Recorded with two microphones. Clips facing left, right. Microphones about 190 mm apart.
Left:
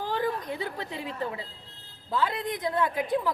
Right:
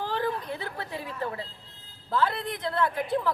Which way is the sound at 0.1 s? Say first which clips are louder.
Left 1 dB; 15° left (ahead or behind).